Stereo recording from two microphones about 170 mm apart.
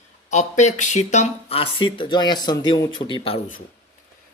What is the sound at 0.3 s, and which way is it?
Speech, 45° left (ahead or behind).